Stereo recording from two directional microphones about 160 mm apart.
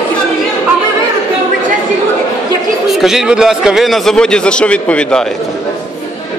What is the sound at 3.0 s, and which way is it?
A man's voice, 5° right (ahead or behind).